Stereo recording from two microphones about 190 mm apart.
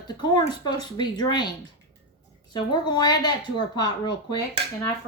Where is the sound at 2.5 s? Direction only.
20° left (ahead or behind).